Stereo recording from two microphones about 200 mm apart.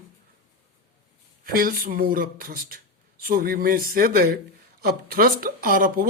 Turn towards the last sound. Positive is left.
turn(degrees=-45)  # may be behind; listen again after turning